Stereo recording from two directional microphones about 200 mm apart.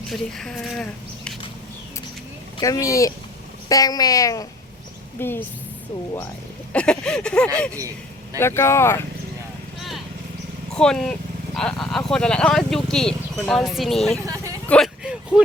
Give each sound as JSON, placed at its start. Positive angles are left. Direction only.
{"t": 0.1, "sound": "speech", "side_deg": 0}
{"t": 2.6, "sound": "speech", "side_deg": 15}
{"t": 6.7, "sound": "speech", "side_deg": 5}
{"t": 7.8, "sound": "vehicle", "side_deg": -15}
{"t": 8.4, "sound": "speech", "side_deg": 15}
{"t": 10.8, "sound": "speech", "side_deg": 5}
{"t": 14.3, "sound": "vehicle", "side_deg": -15}
{"t": 14.7, "sound": "a sound", "side_deg": 0}